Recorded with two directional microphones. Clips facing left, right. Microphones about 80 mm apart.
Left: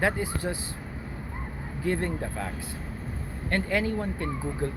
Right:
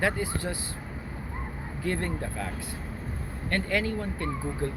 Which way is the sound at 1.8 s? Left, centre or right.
Left.